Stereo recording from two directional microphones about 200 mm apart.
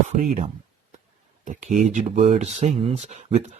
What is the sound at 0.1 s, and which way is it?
Speech, 35° right (ahead or behind).